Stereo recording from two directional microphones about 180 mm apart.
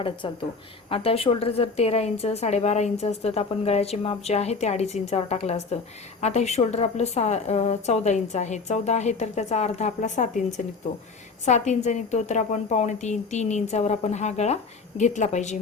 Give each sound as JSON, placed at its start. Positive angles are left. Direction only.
{"t": 0.9, "sound": "a woman's voice", "side_deg": 35}